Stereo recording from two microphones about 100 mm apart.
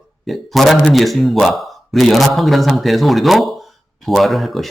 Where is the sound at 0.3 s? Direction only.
Centre (ahead or behind).